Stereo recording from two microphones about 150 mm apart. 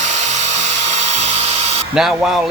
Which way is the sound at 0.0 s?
50° right (ahead or behind).